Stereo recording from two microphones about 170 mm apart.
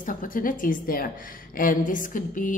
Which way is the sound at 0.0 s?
50° left (ahead or behind).